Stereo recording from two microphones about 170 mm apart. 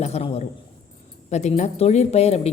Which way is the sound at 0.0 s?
40° left (ahead or behind).